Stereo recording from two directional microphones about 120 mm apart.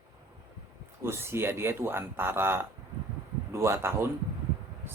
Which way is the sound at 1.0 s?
20° right (ahead or behind).